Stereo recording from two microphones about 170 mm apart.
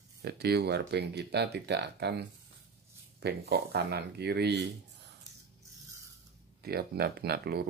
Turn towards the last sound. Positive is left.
turn(degrees=-70)  # may be behind; listen again after turning